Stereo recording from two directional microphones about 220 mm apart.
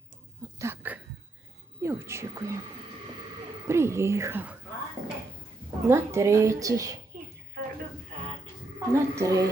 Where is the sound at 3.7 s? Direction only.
10° right (ahead or behind).